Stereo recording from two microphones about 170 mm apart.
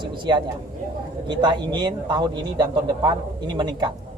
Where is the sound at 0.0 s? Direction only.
25° right (ahead or behind).